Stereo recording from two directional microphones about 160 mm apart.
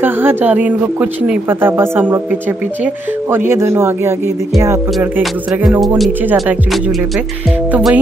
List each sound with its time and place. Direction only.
0.0 s speech: 15° right (ahead or behind)
5.2 s music: centre (ahead or behind)
7.7 s speech: 10° right (ahead or behind)